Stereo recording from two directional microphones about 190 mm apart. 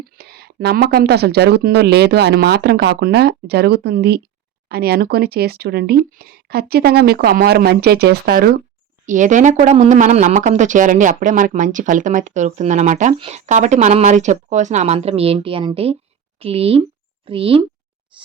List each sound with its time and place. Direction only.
0.2 s speech: 55° right (ahead or behind)
9.0 s speech: 40° right (ahead or behind)
18.1 s writing: 25° right (ahead or behind)